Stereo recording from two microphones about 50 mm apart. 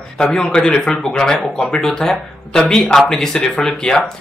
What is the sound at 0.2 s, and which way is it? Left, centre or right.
Speech, centre.